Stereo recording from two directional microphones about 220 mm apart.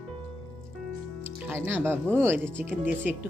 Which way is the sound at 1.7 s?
10° right (ahead or behind).